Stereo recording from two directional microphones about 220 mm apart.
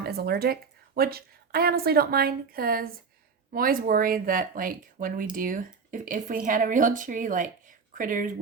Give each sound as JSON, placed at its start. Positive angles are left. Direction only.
{"t": 0.0, "sound": "a woman's voice", "side_deg": -45}